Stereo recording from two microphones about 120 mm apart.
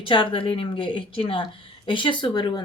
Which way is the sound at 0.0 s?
45° left (ahead or behind).